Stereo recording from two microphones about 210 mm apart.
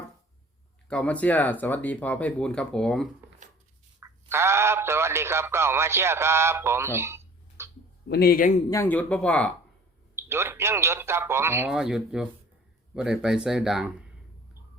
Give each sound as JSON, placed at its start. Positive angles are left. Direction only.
{"t": 0.9, "sound": "speech", "side_deg": 5}
{"t": 4.0, "sound": "speech", "side_deg": -10}
{"t": 8.0, "sound": "a man's voice", "side_deg": 50}
{"t": 8.7, "sound": "speech", "side_deg": 10}
{"t": 10.2, "sound": "a man's voice", "side_deg": -10}